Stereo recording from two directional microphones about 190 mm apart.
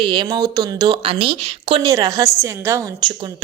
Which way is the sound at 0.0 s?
25° right (ahead or behind).